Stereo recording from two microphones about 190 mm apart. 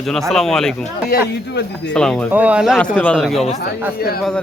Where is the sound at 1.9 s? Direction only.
5° left (ahead or behind).